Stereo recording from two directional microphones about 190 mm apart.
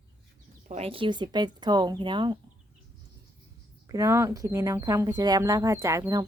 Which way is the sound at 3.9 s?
15° right (ahead or behind).